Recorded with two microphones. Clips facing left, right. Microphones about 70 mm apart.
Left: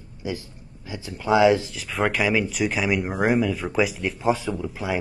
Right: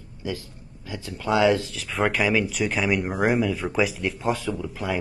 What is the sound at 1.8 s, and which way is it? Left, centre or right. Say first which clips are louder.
Speech: right 1 dB; centre.